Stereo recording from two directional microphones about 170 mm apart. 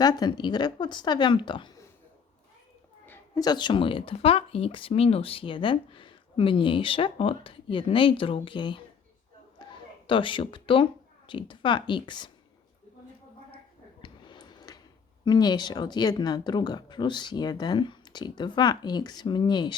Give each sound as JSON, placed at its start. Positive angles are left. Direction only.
{"t": 0.0, "sound": "speech", "side_deg": 25}
{"t": 3.1, "sound": "speech", "side_deg": 20}
{"t": 9.6, "sound": "a sound", "side_deg": 25}
{"t": 10.1, "sound": "speech", "side_deg": 30}
{"t": 14.0, "sound": "a sound", "side_deg": 25}
{"t": 15.2, "sound": "speech", "side_deg": 25}